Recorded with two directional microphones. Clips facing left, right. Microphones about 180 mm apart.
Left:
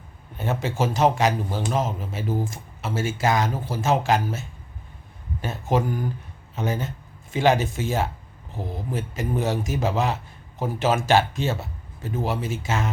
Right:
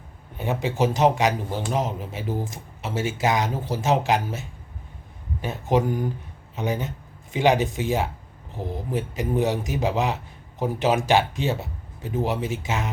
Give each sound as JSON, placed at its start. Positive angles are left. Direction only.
{"t": 0.3, "sound": "speech", "side_deg": -15}